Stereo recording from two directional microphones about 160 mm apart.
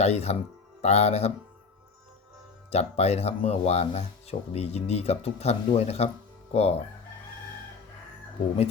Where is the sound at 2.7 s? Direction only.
40° left (ahead or behind).